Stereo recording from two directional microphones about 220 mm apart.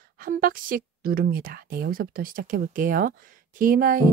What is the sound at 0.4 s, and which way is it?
Speech, 40° right (ahead or behind).